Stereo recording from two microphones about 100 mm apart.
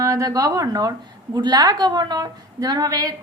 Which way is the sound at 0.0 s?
35° right (ahead or behind).